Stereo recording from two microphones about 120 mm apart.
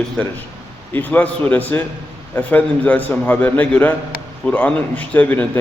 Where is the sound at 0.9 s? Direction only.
15° left (ahead or behind).